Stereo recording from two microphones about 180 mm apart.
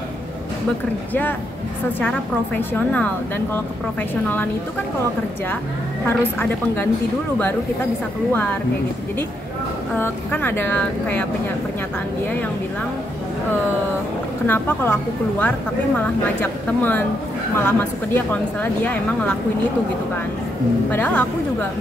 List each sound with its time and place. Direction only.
2.0 s a woman's voice: 10° left (ahead or behind)
6.0 s a woman's voice: 10° left (ahead or behind)
8.3 s a woman's voice: 10° left (ahead or behind)
9.9 s a woman's voice: 10° left (ahead or behind)
14.4 s a woman's voice: 10° left (ahead or behind)
17.6 s a woman's voice: 10° left (ahead or behind)
20.9 s a woman's voice: 10° left (ahead or behind)